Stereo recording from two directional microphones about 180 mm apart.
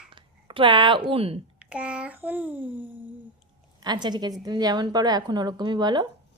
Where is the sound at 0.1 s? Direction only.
25° right (ahead or behind).